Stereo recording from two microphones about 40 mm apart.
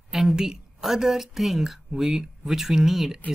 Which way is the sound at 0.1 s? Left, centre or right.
Centre.